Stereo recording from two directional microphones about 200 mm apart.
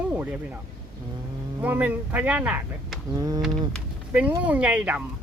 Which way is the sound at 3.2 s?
20° right (ahead or behind).